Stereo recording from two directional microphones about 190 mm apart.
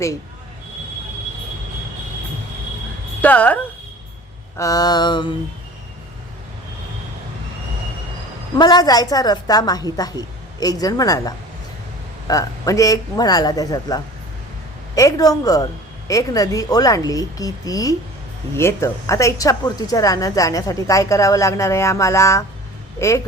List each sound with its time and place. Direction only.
3.2 s a woman's voice: 10° left (ahead or behind); by 5.3 s 25° left (ahead or behind)
8.5 s a woman's voice: 20° left (ahead or behind)